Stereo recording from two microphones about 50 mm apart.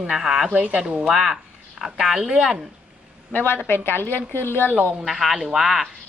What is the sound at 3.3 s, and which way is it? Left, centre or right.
A woman's voice, left.